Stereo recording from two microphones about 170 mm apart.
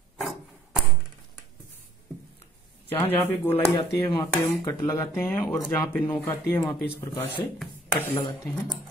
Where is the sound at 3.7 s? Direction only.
25° left (ahead or behind).